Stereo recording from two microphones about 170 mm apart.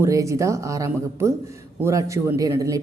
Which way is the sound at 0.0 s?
20° right (ahead or behind).